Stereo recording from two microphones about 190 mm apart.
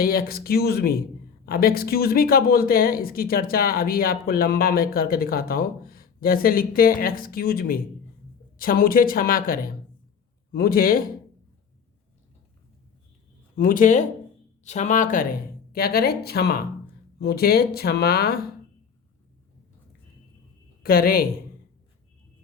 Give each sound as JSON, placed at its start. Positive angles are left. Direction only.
{"t": 0.0, "sound": "speech", "side_deg": 50}
{"t": 13.6, "sound": "speech", "side_deg": 45}
{"t": 20.8, "sound": "speech", "side_deg": 50}